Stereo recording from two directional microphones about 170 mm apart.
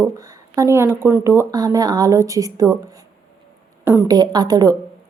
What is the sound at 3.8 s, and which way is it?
Speech, 10° right (ahead or behind).